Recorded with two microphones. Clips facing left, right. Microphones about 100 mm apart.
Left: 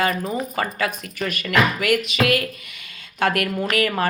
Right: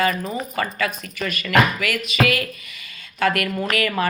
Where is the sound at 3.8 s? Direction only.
50° left (ahead or behind).